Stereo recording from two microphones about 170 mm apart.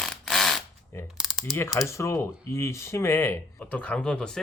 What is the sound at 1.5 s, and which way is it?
Speech, 15° left (ahead or behind).